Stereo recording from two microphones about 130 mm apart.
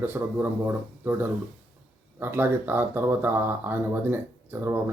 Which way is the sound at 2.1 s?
15° right (ahead or behind).